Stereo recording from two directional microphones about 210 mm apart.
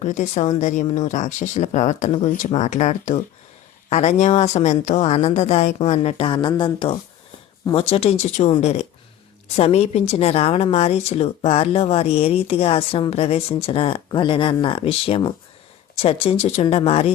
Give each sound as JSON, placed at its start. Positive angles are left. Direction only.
{"t": 0.0, "sound": "a woman's voice", "side_deg": 35}